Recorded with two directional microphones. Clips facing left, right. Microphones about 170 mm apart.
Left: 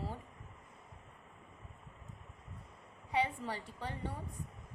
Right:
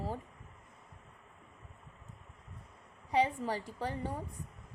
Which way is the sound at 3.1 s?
40° right (ahead or behind).